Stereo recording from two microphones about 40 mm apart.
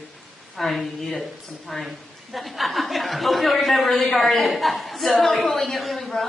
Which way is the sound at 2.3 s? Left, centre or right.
Centre.